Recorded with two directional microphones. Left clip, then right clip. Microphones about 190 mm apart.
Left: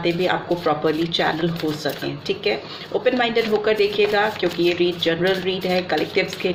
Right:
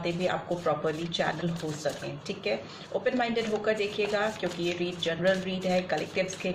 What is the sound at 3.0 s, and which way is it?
Speech, 40° left (ahead or behind).